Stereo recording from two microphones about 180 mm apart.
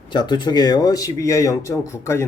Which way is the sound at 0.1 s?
25° left (ahead or behind).